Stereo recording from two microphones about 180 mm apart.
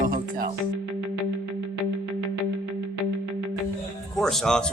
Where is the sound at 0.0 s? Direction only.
50° right (ahead or behind).